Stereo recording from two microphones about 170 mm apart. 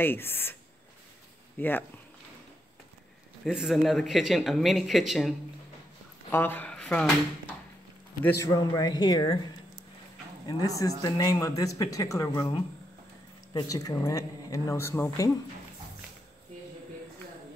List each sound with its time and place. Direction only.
0.0 s speech: 10° left (ahead or behind)
1.6 s speech: 10° left (ahead or behind)
3.4 s speech: centre (ahead or behind)
6.3 s speech: 10° left (ahead or behind)
10.8 s speech: 20° left (ahead or behind)